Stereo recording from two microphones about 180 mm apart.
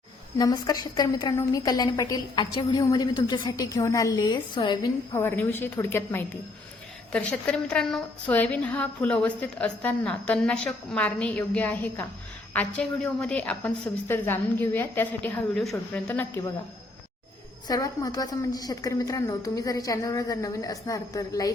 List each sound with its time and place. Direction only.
0.3 s a woman's voice: 20° left (ahead or behind)
5.1 s a woman's voice: 10° left (ahead or behind)
17.7 s a woman's voice: 20° left (ahead or behind)